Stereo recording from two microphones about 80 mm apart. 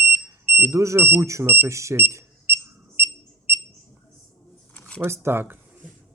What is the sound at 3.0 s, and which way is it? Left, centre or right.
Smoke detector, left.